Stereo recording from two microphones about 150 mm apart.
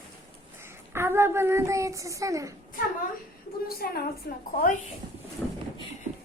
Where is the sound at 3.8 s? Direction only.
90° left.